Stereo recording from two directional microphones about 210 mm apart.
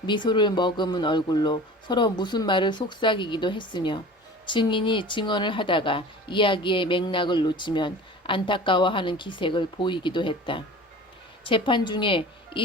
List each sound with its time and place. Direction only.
0.0 s speech: 20° left (ahead or behind)